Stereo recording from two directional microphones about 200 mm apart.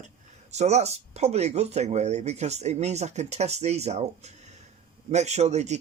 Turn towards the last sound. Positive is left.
turn(degrees=-35)  # may be behind; listen again after turning